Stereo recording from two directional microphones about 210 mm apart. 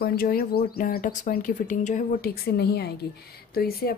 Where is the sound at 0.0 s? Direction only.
45° left (ahead or behind).